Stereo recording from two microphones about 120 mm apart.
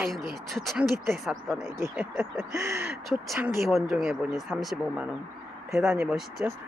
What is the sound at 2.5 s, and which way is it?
Speech, 25° right (ahead or behind).